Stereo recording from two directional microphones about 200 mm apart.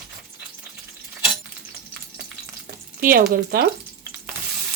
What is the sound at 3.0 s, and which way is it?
Speech, 45° right (ahead or behind).